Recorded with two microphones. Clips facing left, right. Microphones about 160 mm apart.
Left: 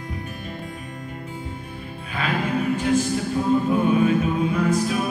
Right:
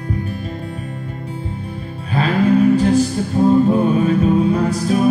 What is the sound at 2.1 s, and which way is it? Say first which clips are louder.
Music: right 10 dB; 35° right (ahead or behind).